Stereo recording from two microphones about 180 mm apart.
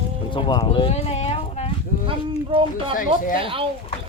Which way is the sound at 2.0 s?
30° right (ahead or behind).